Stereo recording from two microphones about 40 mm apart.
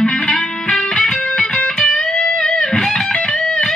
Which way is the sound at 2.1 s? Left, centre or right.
Left.